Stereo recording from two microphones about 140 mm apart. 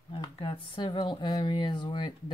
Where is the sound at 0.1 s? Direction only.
40° left (ahead or behind).